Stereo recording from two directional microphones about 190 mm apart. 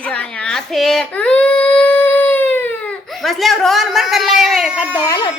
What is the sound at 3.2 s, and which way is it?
A woman's voice, centre (ahead or behind).